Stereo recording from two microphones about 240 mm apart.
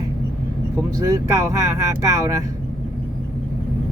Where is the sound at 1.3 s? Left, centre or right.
Centre.